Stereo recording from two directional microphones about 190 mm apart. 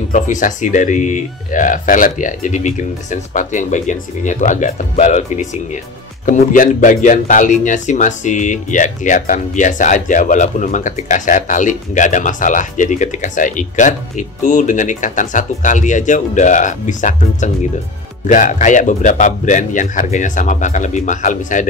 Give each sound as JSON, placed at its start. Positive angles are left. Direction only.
{"t": 0.1, "sound": "speech", "side_deg": 40}